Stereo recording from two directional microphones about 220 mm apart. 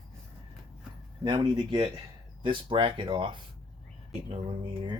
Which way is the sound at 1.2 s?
20° right (ahead or behind).